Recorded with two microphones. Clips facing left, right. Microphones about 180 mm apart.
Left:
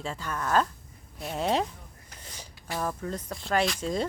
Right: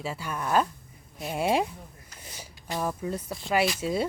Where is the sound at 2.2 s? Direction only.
10° right (ahead or behind).